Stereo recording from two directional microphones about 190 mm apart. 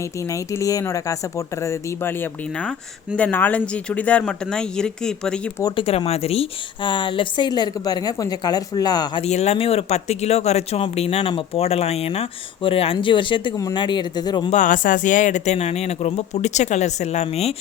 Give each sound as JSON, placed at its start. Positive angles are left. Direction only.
{"t": 0.3, "sound": "speech", "side_deg": 15}
{"t": 5.6, "sound": "a woman's voice", "side_deg": 30}
{"t": 9.2, "sound": "speech", "side_deg": 35}
{"t": 14.5, "sound": "speech", "side_deg": 45}